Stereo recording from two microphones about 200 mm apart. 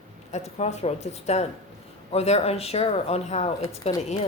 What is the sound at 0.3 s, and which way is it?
Speech, 35° left (ahead or behind).